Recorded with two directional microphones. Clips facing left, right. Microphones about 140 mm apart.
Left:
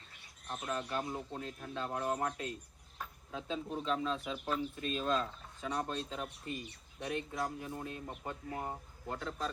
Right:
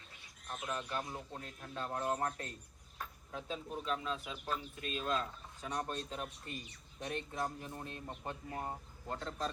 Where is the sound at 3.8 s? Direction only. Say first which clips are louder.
Left 3 dB; 30° left (ahead or behind).